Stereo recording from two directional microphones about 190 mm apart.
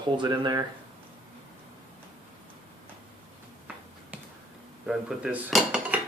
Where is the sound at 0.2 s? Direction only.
25° right (ahead or behind).